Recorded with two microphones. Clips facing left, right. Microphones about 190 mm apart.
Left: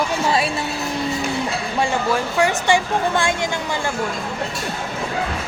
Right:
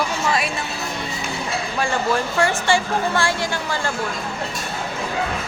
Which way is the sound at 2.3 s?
15° left (ahead or behind).